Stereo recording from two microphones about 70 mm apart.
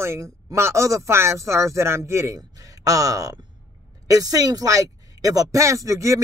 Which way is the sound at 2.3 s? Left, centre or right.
Right.